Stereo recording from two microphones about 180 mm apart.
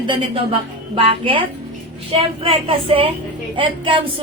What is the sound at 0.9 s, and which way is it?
A woman's voice, 30° right (ahead or behind).